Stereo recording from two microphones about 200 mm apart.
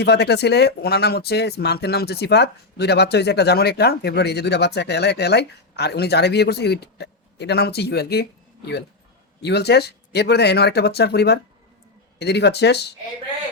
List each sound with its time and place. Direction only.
0.0 s speech: 55° left (ahead or behind)